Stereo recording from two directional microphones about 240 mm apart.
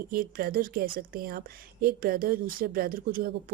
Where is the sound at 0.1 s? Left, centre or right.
Right.